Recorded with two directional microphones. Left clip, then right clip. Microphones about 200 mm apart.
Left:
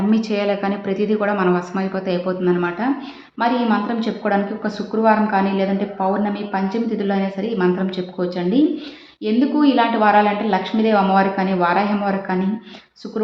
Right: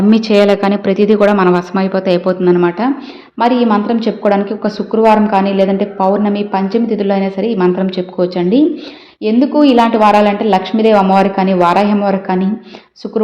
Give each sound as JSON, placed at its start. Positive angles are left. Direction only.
{"t": 0.1, "sound": "speech", "side_deg": -40}